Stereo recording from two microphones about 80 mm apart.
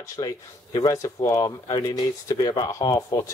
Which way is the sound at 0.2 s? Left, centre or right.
Left.